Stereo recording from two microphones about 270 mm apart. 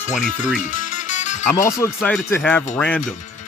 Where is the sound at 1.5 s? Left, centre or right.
Centre.